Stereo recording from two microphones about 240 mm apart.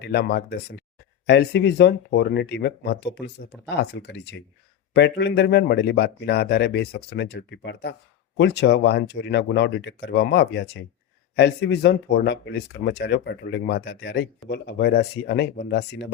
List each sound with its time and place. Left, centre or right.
0.0 s speech: left